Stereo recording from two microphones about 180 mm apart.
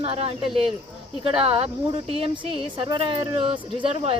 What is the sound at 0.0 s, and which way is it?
Speech, 35° right (ahead or behind).